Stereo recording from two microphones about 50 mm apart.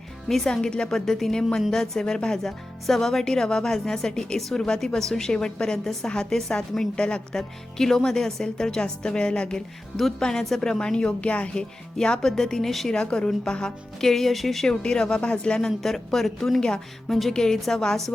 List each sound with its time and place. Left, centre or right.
0.3 s a woman's voice: centre; by 11.6 s left
11.9 s a woman's voice: centre
12.9 s a woman's voice: centre
14.0 s speech: centre
14.7 s a woman's voice: centre
15.8 s speech: centre
16.6 s a woman's voice: centre
17.1 s a woman's voice: centre